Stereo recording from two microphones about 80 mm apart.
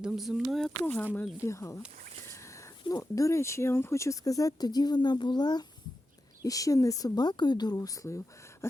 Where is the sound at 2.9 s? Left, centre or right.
Left.